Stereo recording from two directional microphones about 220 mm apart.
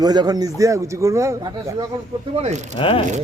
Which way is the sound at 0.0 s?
20° right (ahead or behind).